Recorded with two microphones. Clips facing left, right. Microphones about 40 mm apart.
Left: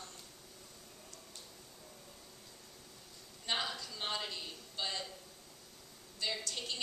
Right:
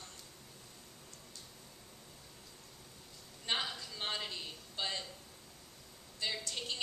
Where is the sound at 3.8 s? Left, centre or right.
Centre.